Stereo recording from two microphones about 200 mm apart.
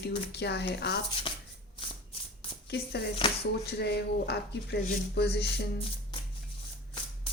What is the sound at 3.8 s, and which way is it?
A woman's voice, 55° left (ahead or behind).